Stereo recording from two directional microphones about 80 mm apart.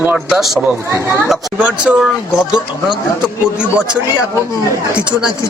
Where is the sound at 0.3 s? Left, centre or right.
Centre.